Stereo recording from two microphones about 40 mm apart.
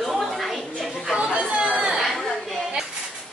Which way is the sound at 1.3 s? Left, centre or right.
Right.